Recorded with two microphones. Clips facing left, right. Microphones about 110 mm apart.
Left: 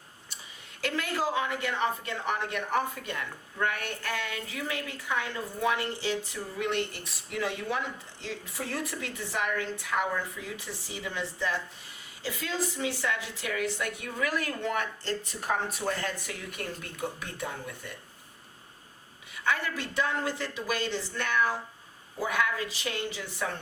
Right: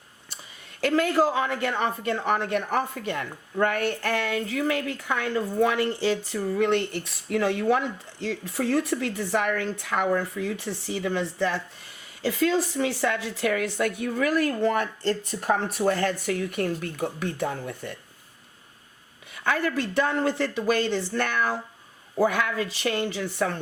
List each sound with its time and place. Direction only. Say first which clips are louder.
0.8 s a woman's voice: right 9 dB; 50° right (ahead or behind)
15.9 s a woman's voice: right 8 dB; 60° right (ahead or behind)
19.5 s a woman's voice: right 5 dB; 55° right (ahead or behind)